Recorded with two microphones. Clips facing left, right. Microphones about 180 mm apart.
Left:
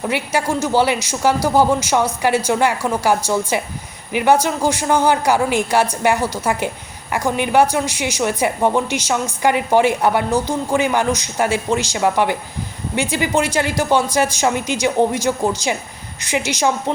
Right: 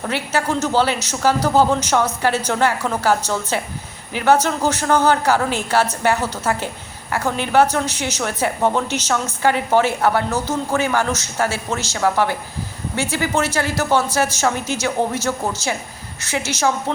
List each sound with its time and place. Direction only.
0.1 s a woman's voice: 10° left (ahead or behind)